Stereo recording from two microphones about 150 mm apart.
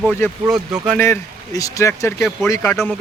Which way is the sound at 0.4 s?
5° right (ahead or behind).